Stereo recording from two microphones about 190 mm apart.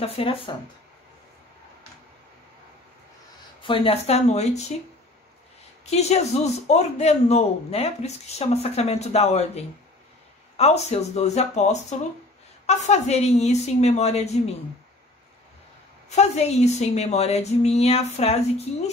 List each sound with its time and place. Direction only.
0.0 s speech: 30° left (ahead or behind)
3.6 s a man's voice: 30° left (ahead or behind)
5.9 s a man's voice: 35° left (ahead or behind)
10.6 s a man's voice: 35° left (ahead or behind)
16.1 s a man's voice: 35° left (ahead or behind)